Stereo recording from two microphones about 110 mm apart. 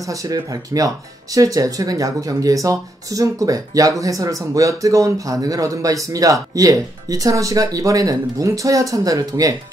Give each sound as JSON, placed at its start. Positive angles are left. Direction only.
{"t": 0.0, "sound": "speech", "side_deg": -30}